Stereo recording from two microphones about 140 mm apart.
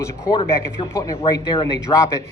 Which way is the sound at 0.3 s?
35° left (ahead or behind).